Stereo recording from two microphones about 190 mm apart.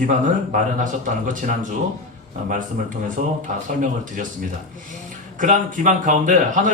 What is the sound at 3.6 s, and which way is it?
Speech, 45° right (ahead or behind).